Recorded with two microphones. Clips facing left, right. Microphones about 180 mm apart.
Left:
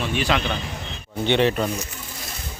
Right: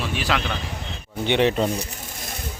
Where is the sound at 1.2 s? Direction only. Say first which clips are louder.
Even; 15° right (ahead or behind).